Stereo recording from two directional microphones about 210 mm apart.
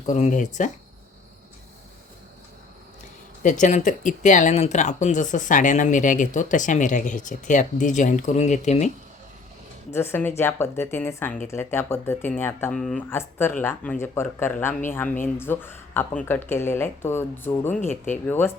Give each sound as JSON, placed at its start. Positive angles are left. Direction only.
{"t": 0.0, "sound": "speech", "side_deg": 35}
{"t": 3.4, "sound": "speech", "side_deg": 35}
{"t": 9.9, "sound": "speech", "side_deg": 10}